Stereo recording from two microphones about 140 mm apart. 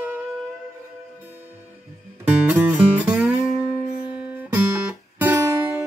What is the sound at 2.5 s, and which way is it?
Music, 10° right (ahead or behind).